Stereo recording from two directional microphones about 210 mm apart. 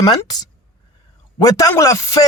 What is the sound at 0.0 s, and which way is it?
Speech, 20° left (ahead or behind).